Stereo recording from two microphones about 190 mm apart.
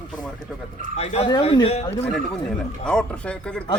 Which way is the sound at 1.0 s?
35° left (ahead or behind).